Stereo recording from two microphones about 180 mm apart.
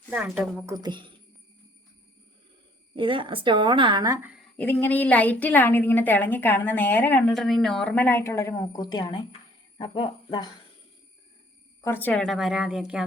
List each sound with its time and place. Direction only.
0.1 s a woman's voice: 10° right (ahead or behind); by 1.1 s 25° right (ahead or behind)
2.9 s speech: 30° right (ahead or behind)
4.5 s a woman's voice: 10° left (ahead or behind)
11.8 s a woman's voice: 10° left (ahead or behind); by 13.1 s 5° right (ahead or behind)